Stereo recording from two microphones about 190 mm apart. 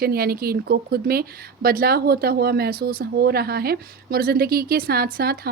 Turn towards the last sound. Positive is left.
turn(degrees=-50)  # may be behind; listen again after turning